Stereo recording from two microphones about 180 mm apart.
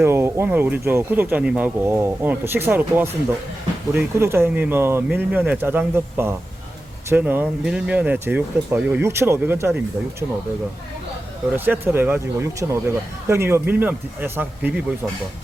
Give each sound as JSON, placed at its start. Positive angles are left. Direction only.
{"t": 0.0, "sound": "speech", "side_deg": -15}
{"t": 4.2, "sound": "speech", "side_deg": -15}
{"t": 11.5, "sound": "speech", "side_deg": -10}